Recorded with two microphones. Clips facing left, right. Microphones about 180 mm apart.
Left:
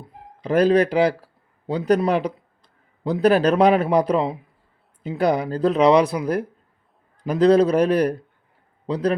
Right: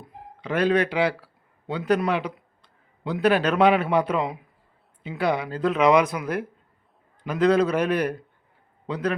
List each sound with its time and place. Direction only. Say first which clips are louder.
0.4 s speech: left 5 dB; 40° left (ahead or behind)